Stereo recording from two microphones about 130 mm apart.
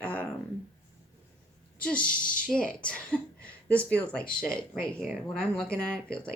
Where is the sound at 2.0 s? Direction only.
90° left.